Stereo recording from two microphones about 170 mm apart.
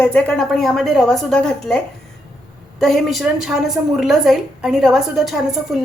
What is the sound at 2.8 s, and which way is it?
A woman's voice, centre (ahead or behind).